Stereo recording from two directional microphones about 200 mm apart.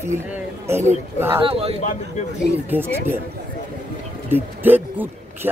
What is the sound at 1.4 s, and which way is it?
Speech, 30° right (ahead or behind).